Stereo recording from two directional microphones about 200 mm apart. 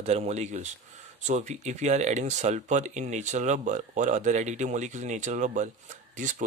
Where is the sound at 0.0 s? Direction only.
30° right (ahead or behind).